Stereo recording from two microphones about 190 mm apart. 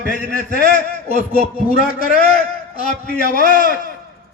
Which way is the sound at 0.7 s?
45° left (ahead or behind).